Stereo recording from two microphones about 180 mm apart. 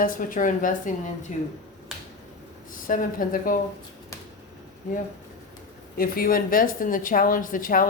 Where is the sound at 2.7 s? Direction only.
50° left (ahead or behind).